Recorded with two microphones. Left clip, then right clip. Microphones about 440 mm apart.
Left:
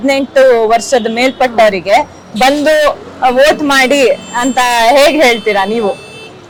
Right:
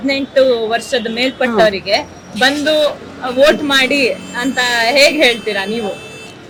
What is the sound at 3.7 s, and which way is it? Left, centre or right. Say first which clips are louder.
Speech: left 5 dB; left.